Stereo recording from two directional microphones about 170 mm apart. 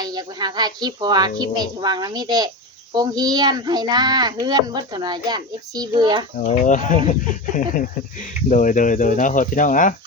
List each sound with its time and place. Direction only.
0.0 s a child's voice: 25° right (ahead or behind)
6.7 s speech: 50° left (ahead or behind)